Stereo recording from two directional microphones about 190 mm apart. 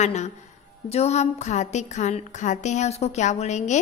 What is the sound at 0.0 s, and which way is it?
A woman's voice, 40° left (ahead or behind).